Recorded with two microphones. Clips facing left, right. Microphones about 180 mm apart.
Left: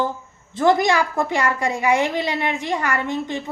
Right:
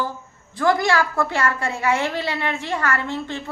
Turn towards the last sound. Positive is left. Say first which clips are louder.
# left 2 dB
turn(degrees=15)  # may be behind; listen again after turning